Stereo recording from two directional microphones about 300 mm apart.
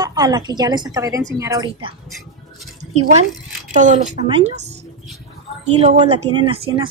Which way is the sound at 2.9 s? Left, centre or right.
Right.